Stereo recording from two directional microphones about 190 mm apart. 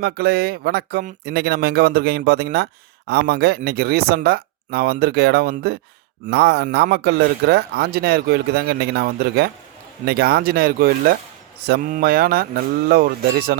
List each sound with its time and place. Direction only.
0.0 s speech: 55° right (ahead or behind)